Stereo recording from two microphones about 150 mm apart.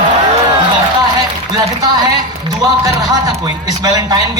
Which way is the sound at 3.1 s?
25° right (ahead or behind).